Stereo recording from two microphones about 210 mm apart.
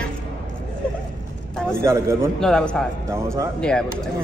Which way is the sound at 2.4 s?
5° left (ahead or behind).